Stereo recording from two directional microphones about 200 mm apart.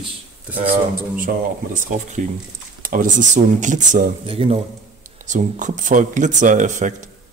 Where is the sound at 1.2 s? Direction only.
45° right (ahead or behind).